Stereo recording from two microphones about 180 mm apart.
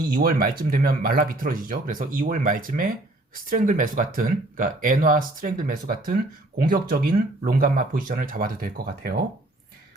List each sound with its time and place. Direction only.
0.1 s speech: 55° right (ahead or behind)